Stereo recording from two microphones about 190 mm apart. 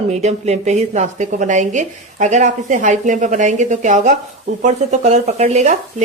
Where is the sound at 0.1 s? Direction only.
35° right (ahead or behind).